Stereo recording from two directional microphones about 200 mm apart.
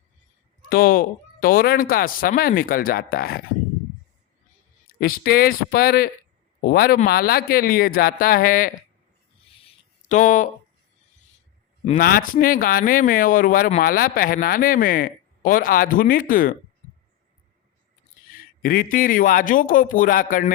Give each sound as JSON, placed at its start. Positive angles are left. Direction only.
{"t": 0.7, "sound": "speech", "side_deg": 45}
{"t": 4.9, "sound": "speech", "side_deg": 45}
{"t": 9.6, "sound": "a sound", "side_deg": 35}
{"t": 11.9, "sound": "speech", "side_deg": 45}
{"t": 18.6, "sound": "speech", "side_deg": 45}